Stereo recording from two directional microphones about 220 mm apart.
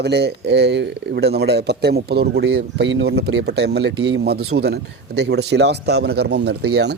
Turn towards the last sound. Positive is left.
turn(degrees=-50)  # may be behind; listen again after turning